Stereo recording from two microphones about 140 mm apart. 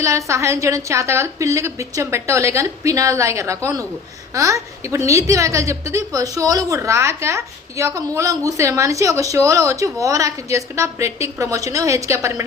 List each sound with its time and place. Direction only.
0.0 s a woman's voice: 20° right (ahead or behind)